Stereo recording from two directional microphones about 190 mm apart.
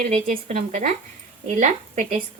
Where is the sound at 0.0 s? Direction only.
40° right (ahead or behind).